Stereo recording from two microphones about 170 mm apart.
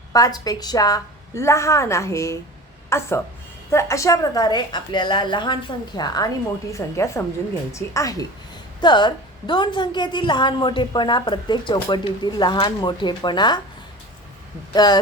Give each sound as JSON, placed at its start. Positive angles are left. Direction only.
{"t": 0.1, "sound": "a woman's voice", "side_deg": 20}
{"t": 14.7, "sound": "a woman's voice", "side_deg": 25}